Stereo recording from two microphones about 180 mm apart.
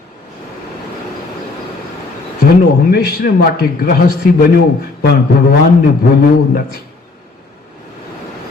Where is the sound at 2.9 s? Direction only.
55° left (ahead or behind).